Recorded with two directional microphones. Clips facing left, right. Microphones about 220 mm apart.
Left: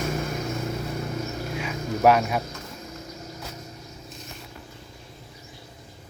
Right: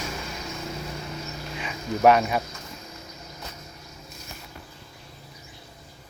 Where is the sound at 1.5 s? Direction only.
5° left (ahead or behind).